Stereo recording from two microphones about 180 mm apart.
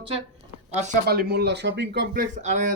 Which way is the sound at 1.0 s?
60° right (ahead or behind).